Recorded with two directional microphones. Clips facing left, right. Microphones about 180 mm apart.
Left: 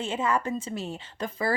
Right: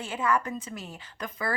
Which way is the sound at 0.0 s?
25° left (ahead or behind).